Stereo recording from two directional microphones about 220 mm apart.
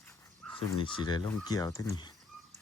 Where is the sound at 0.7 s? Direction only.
20° left (ahead or behind).